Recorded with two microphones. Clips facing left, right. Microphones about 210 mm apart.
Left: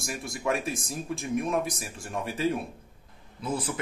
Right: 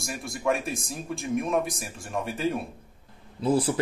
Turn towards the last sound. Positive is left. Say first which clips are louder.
# right 8 dB
turn(degrees=-30)  # may be behind; listen again after turning